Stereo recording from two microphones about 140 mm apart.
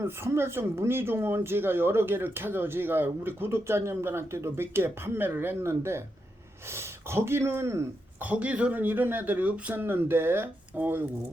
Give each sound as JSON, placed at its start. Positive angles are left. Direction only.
{"t": 0.0, "sound": "speech", "side_deg": -15}